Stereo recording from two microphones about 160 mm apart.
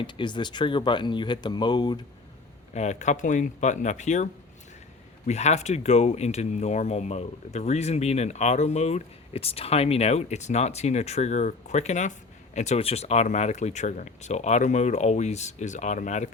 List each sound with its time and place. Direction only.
0.0 s speech: 30° left (ahead or behind)
2.7 s speech: 45° left (ahead or behind)